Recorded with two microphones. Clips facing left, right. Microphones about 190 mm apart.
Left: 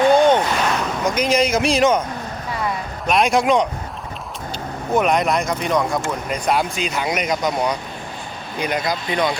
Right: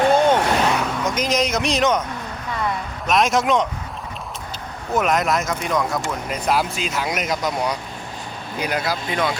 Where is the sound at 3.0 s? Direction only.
Centre (ahead or behind).